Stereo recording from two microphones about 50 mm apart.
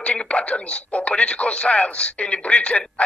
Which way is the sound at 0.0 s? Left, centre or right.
Left.